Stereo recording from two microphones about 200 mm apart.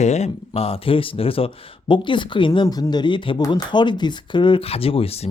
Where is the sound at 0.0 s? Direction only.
35° left (ahead or behind).